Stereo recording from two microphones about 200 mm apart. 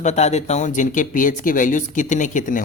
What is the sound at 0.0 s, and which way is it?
Speech, 35° left (ahead or behind).